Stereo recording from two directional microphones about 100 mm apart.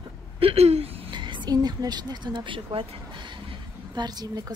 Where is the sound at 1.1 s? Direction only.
50° right (ahead or behind).